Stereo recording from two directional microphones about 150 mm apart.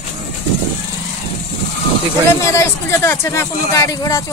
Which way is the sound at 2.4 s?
15° left (ahead or behind).